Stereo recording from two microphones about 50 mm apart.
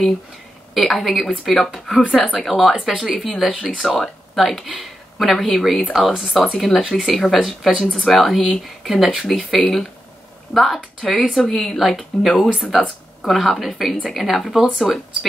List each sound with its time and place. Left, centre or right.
0.7 s speech: centre
2.0 s speech: left
2.4 s speech: centre
2.9 s speech: centre
3.9 s speech: centre